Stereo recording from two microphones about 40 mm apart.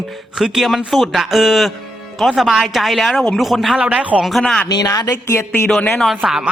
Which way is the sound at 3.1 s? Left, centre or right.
Centre.